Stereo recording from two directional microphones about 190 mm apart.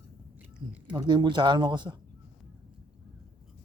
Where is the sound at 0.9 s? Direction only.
25° right (ahead or behind).